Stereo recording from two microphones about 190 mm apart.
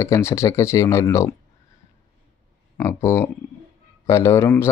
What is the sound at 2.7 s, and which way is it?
Speech, 15° left (ahead or behind).